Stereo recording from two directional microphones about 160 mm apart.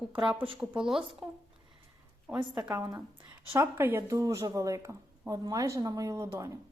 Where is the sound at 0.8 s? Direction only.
5° right (ahead or behind).